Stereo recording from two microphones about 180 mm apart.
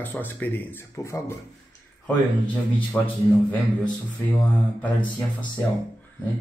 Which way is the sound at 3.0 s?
10° left (ahead or behind).